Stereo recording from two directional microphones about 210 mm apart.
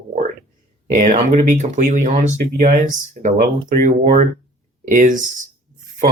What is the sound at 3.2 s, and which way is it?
Speech, 35° right (ahead or behind).